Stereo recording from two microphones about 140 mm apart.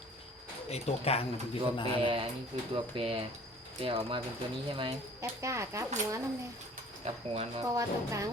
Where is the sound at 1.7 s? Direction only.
35° left (ahead or behind).